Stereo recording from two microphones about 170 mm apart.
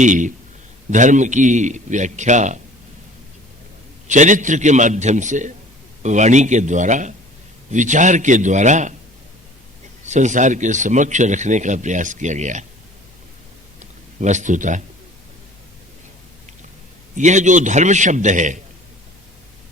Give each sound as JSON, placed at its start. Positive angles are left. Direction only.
{"t": 0.0, "sound": "speech", "side_deg": -50}
{"t": 4.0, "sound": "speech", "side_deg": -45}
{"t": 10.0, "sound": "speech", "side_deg": -45}
{"t": 14.2, "sound": "speech", "side_deg": -45}
{"t": 17.2, "sound": "speech", "side_deg": -45}